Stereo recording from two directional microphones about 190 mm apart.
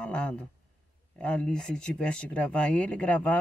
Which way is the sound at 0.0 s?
5° left (ahead or behind).